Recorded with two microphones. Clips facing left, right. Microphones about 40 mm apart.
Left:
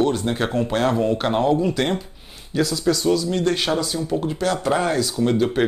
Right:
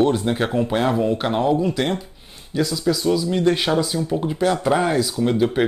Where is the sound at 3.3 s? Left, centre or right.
Right.